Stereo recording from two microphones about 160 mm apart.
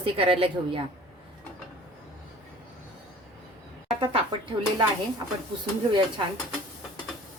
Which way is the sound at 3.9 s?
35° right (ahead or behind).